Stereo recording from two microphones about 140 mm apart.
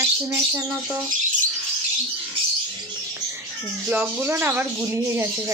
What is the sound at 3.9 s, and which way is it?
Speech, 15° right (ahead or behind).